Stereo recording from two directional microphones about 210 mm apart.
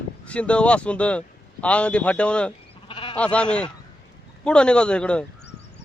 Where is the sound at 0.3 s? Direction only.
5° left (ahead or behind).